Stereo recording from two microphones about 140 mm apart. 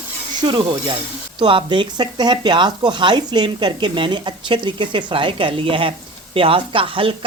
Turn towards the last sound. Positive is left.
turn(degrees=-40)  # may be behind; listen again after turning